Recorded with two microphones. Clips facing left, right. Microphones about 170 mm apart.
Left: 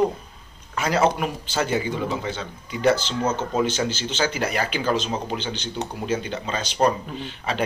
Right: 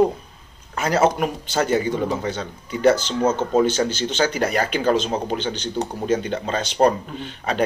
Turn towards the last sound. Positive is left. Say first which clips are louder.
# right 3 dB
turn(degrees=-45)  # may be behind; listen again after turning